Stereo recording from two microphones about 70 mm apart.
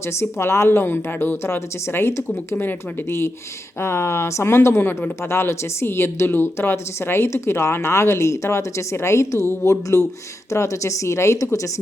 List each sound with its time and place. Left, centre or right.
0.0 s a woman's voice: left